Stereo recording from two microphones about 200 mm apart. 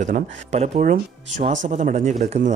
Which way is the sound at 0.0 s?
35° right (ahead or behind).